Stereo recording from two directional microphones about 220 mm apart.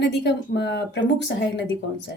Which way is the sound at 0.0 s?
50° left (ahead or behind).